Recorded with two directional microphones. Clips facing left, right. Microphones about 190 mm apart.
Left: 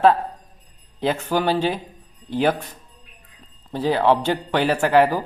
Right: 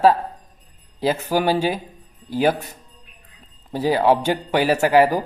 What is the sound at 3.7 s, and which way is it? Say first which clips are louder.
Speech: right 1 dB; 10° right (ahead or behind).